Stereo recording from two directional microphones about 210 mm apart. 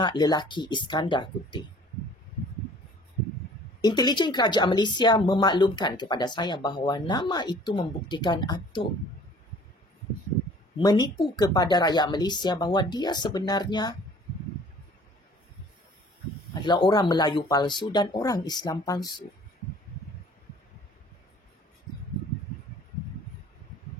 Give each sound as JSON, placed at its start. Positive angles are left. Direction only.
{"t": 0.0, "sound": "speech", "side_deg": 20}
{"t": 3.8, "sound": "speech", "side_deg": 20}
{"t": 10.8, "sound": "speech", "side_deg": 20}
{"t": 16.5, "sound": "speech", "side_deg": 20}